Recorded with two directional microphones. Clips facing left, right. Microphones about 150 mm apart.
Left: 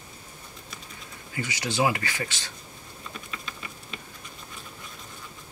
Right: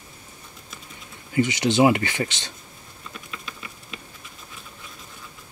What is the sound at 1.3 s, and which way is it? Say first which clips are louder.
Speech: right 11 dB; 20° right (ahead or behind).